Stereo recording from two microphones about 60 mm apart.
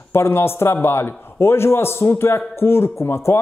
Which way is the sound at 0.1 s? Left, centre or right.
Left.